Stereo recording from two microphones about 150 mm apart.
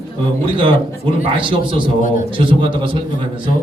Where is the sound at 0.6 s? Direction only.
35° right (ahead or behind).